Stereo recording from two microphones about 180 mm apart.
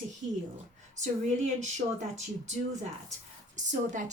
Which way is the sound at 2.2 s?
40° right (ahead or behind).